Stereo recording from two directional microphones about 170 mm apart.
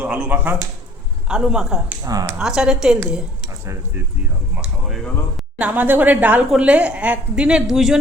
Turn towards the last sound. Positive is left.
turn(degrees=0)  # may be behind; listen again after turning